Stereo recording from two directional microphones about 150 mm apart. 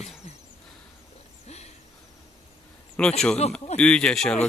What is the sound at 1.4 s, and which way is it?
Hoot, 45° left (ahead or behind).